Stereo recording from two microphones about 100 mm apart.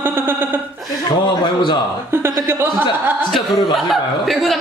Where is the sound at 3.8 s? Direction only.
Centre (ahead or behind).